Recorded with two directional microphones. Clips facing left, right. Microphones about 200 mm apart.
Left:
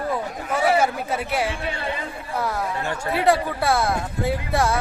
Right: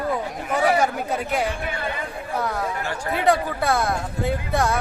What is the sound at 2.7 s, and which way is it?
Speech, 20° left (ahead or behind).